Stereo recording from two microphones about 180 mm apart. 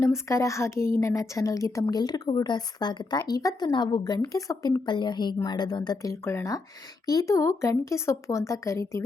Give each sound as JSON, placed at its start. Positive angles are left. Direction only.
{"t": 0.0, "sound": "speech", "side_deg": 15}